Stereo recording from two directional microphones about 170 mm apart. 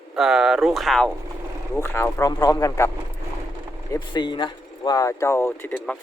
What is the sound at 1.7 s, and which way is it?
Speech, 15° left (ahead or behind).